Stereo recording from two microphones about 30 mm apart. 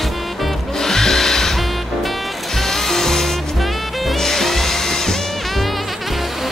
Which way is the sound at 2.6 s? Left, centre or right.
Centre.